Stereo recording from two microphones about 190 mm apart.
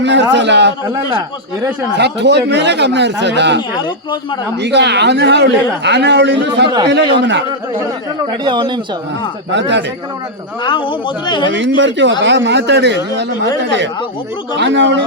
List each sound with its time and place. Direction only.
0.0 s a man's voice: 70° right (ahead or behind)
2.0 s a man's voice: 65° right (ahead or behind)
3.8 s speech: 25° left (ahead or behind)
4.6 s a man's voice: 65° right (ahead or behind)
8.4 s speech: 25° right (ahead or behind)
9.5 s a man's voice: 70° right (ahead or behind)
10.6 s speech: 25° left (ahead or behind)
11.4 s a man's voice: 70° right (ahead or behind)
14.5 s a man's voice: 70° right (ahead or behind)